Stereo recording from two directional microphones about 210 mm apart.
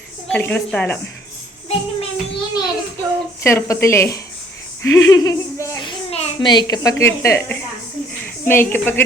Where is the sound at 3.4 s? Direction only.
15° left (ahead or behind).